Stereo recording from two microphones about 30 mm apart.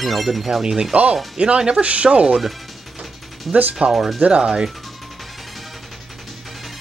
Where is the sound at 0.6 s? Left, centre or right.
Right.